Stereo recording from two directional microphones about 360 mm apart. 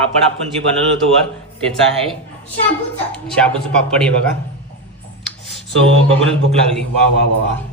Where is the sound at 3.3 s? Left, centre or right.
Centre.